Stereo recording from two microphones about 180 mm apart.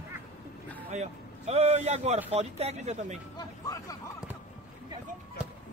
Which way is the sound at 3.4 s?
20° left (ahead or behind).